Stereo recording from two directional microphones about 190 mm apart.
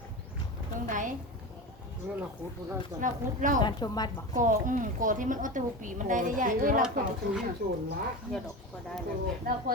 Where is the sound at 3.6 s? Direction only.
20° left (ahead or behind).